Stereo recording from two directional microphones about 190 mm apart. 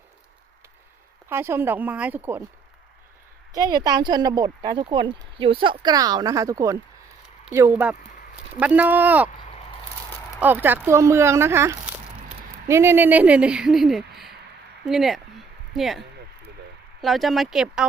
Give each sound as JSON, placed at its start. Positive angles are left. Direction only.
{"t": 1.3, "sound": "speech", "side_deg": -10}
{"t": 3.5, "sound": "speech", "side_deg": -20}
{"t": 10.4, "sound": "speech", "side_deg": -10}
{"t": 14.8, "sound": "a sound", "side_deg": 0}
{"t": 17.0, "sound": "speech", "side_deg": 0}